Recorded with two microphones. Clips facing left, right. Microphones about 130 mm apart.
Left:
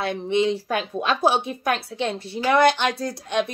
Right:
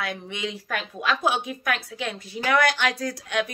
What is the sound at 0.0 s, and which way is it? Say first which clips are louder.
Speech: left 9 dB; 30° left (ahead or behind).